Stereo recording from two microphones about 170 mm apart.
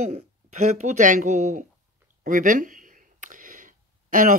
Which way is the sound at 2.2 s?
50° right (ahead or behind).